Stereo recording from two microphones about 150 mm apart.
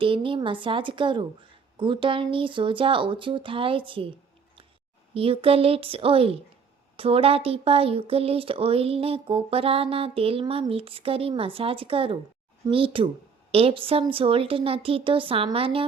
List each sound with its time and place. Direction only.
0.0 s a woman's voice: 35° right (ahead or behind)
5.1 s a woman's voice: 40° right (ahead or behind)